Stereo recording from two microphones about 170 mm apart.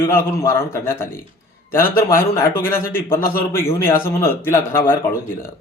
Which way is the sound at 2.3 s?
15° left (ahead or behind).